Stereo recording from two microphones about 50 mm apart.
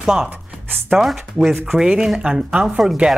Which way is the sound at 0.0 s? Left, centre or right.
Centre.